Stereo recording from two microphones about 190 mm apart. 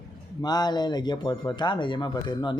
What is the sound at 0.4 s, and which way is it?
Speech, 20° left (ahead or behind).